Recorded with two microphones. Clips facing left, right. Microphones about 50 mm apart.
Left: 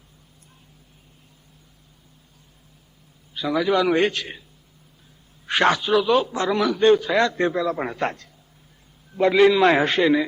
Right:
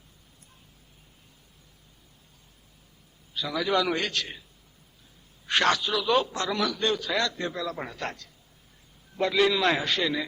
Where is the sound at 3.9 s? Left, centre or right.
Left.